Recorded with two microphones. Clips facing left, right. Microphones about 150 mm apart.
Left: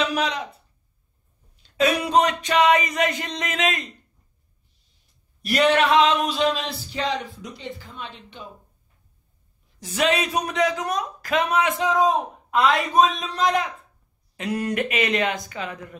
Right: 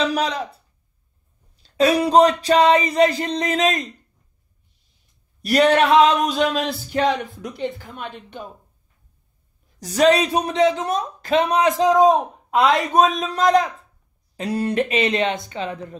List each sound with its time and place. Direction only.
0.0 s speech: 35° right (ahead or behind)
1.6 s speech: 35° right (ahead or behind)
5.4 s a sound: 40° right (ahead or behind)
9.8 s speech: 40° right (ahead or behind)
12.5 s a sound: 45° right (ahead or behind)
14.3 s speech: 35° right (ahead or behind)